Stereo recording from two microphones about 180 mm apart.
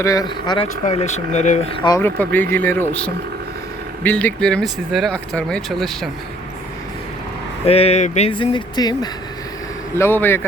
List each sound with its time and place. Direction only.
0.0 s speech: 20° left (ahead or behind)
0.9 s speech: 40° left (ahead or behind)
1.7 s speech: 25° left (ahead or behind)
2.0 s speech: 10° left (ahead or behind)
7.6 s speech: 35° left (ahead or behind); by 10.4 s 10° left (ahead or behind)